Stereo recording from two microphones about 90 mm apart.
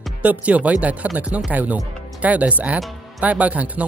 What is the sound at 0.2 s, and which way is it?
Speech, 15° right (ahead or behind).